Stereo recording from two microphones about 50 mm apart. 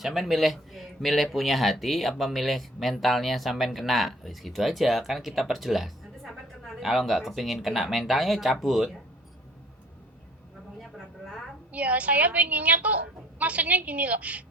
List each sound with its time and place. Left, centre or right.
0.0 s speech: centre
10.8 s a sound: centre
11.7 s a woman's voice: right